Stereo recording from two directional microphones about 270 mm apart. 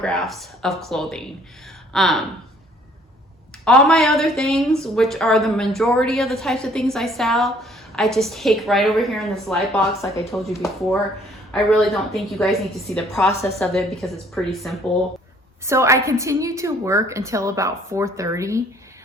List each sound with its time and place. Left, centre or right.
0.0 s a woman's voice: centre
3.6 s a woman's voice: centre
11.5 s a woman's voice: centre
15.6 s a woman's voice: centre